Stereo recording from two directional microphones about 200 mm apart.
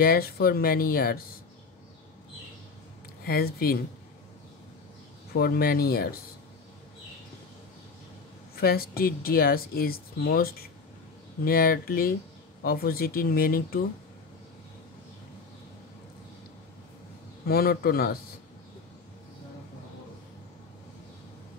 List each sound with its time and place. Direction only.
0.0 s speech: 50° left (ahead or behind)
3.3 s speech: 50° left (ahead or behind)
5.3 s speech: 50° left (ahead or behind)
8.5 s speech: 50° left (ahead or behind)
17.5 s speech: 50° left (ahead or behind)